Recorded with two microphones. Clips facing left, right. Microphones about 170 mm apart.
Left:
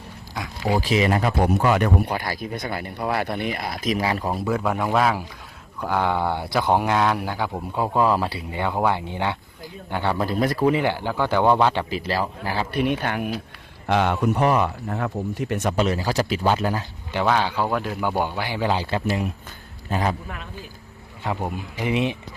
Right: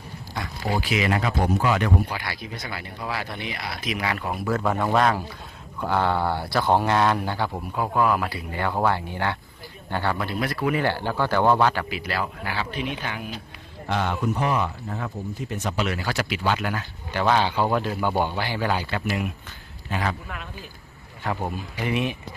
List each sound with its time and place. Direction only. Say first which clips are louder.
0.3 s dog: left 4 dB; 5° left (ahead or behind)
0.8 s speech: left 3 dB; 35° left (ahead or behind)
1.4 s a man's voice: left 4 dB; 50° left (ahead or behind)
4.0 s speech: left 4 dB; 30° left (ahead or behind)
4.5 s speech: right 1 dB; centre (ahead or behind)
7.8 s speech: left 2 dB; 25° left (ahead or behind)
10.2 s speech: left 5 dB; 40° left (ahead or behind)
10.7 s speech: left 3 dB; 20° left (ahead or behind)
11.9 s speech: left 4 dB; 35° left (ahead or behind)
12.7 s speech: left 7 dB; 55° left (ahead or behind)
15.8 s speech: left 4 dB; 35° left (ahead or behind)
17.2 s speech: right 1 dB; centre (ahead or behind); by 20.1 s 35° left (ahead or behind)
21.2 s speech: left 1 dB; 15° left (ahead or behind)